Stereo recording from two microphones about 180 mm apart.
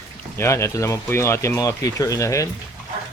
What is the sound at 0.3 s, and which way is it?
Speech, 15° left (ahead or behind).